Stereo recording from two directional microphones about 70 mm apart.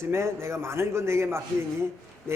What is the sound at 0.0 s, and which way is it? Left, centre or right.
A man's voice, right.